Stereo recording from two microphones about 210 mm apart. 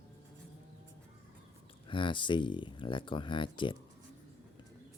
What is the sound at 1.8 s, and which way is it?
Speech, 25° left (ahead or behind).